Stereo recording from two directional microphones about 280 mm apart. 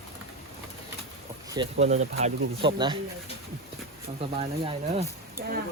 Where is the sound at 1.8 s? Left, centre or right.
Right.